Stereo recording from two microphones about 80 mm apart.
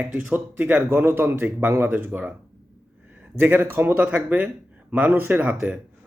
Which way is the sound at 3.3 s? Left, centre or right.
Right.